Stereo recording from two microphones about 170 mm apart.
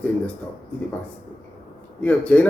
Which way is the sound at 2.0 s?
10° left (ahead or behind).